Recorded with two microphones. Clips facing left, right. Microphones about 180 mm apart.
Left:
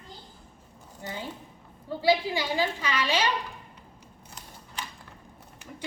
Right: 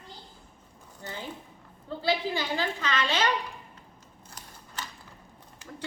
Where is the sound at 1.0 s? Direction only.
15° left (ahead or behind).